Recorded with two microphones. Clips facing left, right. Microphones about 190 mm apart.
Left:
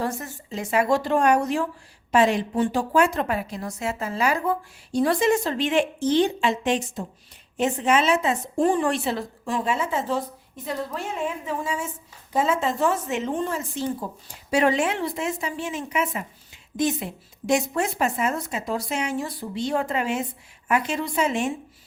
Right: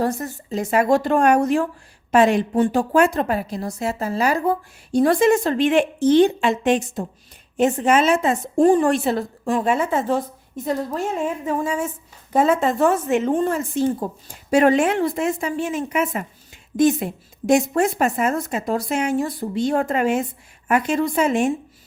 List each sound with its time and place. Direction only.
0.0 s a woman's voice: 40° right (ahead or behind)